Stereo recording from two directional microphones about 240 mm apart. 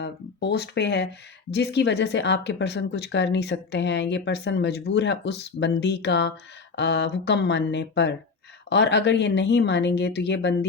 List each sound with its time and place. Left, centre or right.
0.0 s a woman's voice: left